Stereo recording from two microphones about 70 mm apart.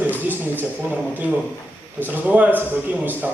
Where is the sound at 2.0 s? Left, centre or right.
Right.